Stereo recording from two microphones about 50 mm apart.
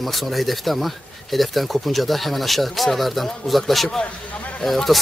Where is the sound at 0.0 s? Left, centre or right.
Centre.